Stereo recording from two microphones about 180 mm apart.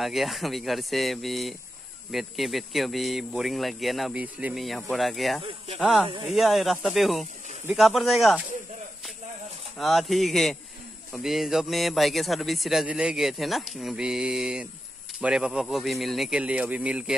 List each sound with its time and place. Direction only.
0.0 s a man's voice: centre (ahead or behind)
5.4 s speech: 30° right (ahead or behind)
5.8 s a man's voice: 5° right (ahead or behind)
9.8 s a man's voice: centre (ahead or behind)